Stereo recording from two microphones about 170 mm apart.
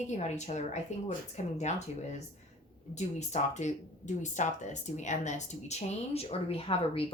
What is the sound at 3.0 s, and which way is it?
Speech, 40° left (ahead or behind).